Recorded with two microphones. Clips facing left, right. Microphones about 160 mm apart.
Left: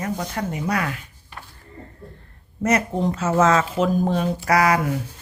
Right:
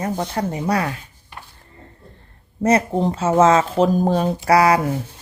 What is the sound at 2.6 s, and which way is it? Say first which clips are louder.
Speech: right 4 dB; 30° right (ahead or behind).